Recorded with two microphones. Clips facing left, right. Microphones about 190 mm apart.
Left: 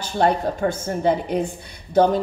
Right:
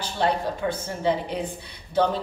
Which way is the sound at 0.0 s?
45° left (ahead or behind).